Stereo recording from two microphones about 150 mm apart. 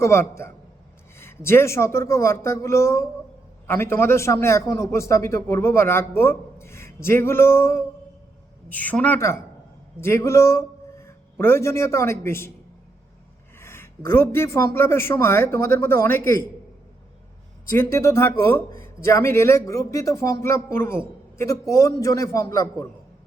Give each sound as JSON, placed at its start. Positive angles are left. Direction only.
{"t": 0.0, "sound": "a man's voice", "side_deg": 20}
{"t": 13.6, "sound": "speech", "side_deg": 15}
{"t": 17.7, "sound": "a man's voice", "side_deg": 15}